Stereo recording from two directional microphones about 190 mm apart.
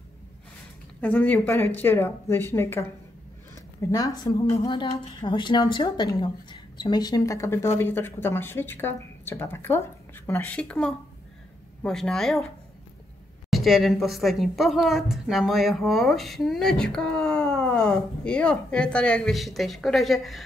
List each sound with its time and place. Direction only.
1.0 s a woman's voice: 10° left (ahead or behind)
13.5 s a woman's voice: centre (ahead or behind)